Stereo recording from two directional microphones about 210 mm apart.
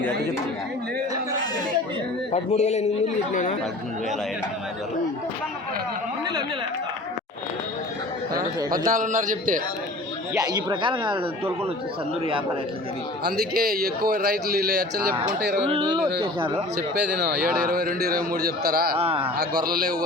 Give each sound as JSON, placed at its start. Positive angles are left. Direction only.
{"t": 2.3, "sound": "a man's voice", "side_deg": 30}
{"t": 8.8, "sound": "a man's voice", "side_deg": -40}
{"t": 10.3, "sound": "a man's voice", "side_deg": -20}
{"t": 13.2, "sound": "speech", "side_deg": -45}
{"t": 17.7, "sound": "speech", "side_deg": -45}
{"t": 18.9, "sound": "a man's voice", "side_deg": -25}
{"t": 19.6, "sound": "speech", "side_deg": -45}